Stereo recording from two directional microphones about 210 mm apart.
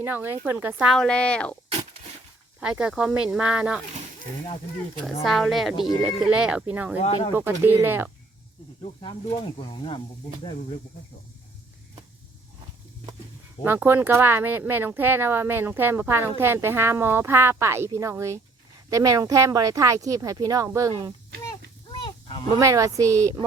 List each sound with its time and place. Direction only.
0.0 s speech: 10° right (ahead or behind); by 1.5 s 5° left (ahead or behind)
2.6 s speech: 5° right (ahead or behind)
5.0 s speech: centre (ahead or behind)
7.0 s speech: 25° left (ahead or behind)
7.3 s speech: 10° right (ahead or behind)
8.8 s speech: 30° left (ahead or behind)
13.7 s speech: 10° right (ahead or behind)
22.0 s a sound: 20° left (ahead or behind)
22.5 s speech: 15° right (ahead or behind)